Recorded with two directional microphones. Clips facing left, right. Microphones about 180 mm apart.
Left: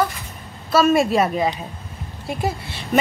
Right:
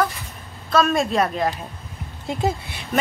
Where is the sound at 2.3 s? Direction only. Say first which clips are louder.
Right 1 dB; 20° right (ahead or behind).